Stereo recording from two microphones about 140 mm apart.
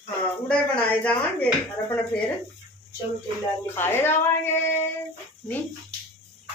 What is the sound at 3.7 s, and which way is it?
Speech, 15° left (ahead or behind).